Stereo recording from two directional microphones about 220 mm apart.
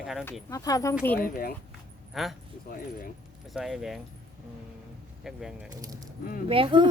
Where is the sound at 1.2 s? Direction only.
40° left (ahead or behind).